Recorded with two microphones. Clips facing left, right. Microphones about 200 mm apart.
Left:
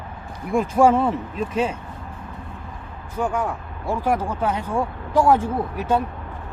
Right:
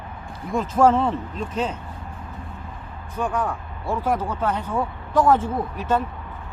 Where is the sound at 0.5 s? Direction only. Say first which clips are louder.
Left 1 dB; 10° left (ahead or behind).